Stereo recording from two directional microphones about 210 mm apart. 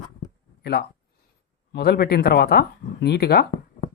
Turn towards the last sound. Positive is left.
turn(degrees=50)  # may be behind; listen again after turning